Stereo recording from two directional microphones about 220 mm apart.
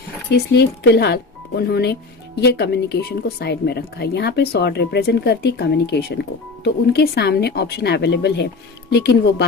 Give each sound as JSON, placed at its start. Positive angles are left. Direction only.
{"t": 0.3, "sound": "speech", "side_deg": 50}